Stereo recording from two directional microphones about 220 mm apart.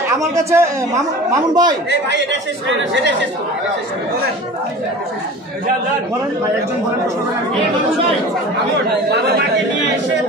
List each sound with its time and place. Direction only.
0.4 s a man's voice: 15° right (ahead or behind)
1.9 s a woman's voice: 55° right (ahead or behind)